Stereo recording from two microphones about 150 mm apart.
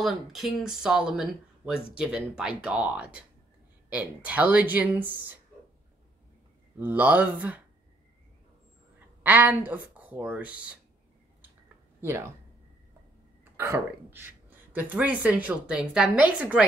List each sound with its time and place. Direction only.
0.0 s speech: centre (ahead or behind)
6.8 s speech: 10° right (ahead or behind)
9.2 s speech: 10° right (ahead or behind)
12.0 s speech: 15° right (ahead or behind)
13.4 s speech: 15° right (ahead or behind)